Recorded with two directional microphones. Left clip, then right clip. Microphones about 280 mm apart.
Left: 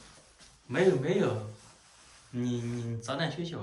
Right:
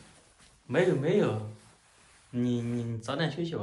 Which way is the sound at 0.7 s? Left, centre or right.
Centre.